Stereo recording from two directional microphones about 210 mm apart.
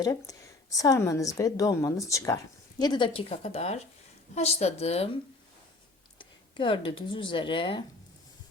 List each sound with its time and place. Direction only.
0.0 s a woman's voice: 15° left (ahead or behind)
6.1 s speech: 25° left (ahead or behind)